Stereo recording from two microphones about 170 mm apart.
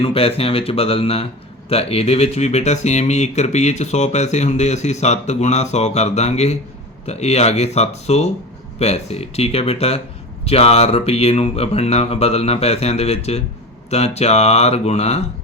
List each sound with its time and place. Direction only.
0.0 s speech: 35° left (ahead or behind)